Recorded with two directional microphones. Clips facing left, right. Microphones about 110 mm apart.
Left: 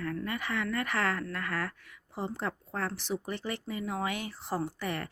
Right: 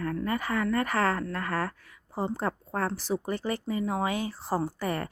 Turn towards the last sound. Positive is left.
turn(degrees=-40)  # may be behind; listen again after turning